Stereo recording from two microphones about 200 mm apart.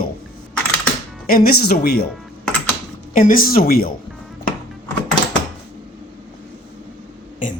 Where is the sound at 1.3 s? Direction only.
50° left (ahead or behind).